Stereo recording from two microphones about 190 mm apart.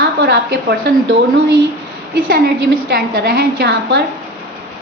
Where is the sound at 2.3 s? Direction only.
55° right (ahead or behind).